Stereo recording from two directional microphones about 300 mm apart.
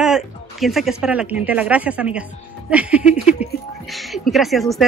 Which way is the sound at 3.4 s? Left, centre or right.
Left.